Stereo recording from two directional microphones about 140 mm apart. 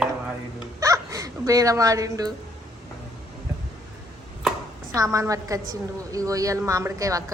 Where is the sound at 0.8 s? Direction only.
25° right (ahead or behind).